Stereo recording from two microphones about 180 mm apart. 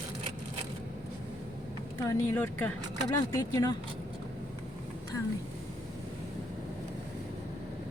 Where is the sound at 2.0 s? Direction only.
10° left (ahead or behind).